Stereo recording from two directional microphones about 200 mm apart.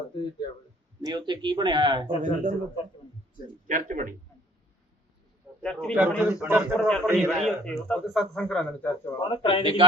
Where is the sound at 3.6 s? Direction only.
40° right (ahead or behind).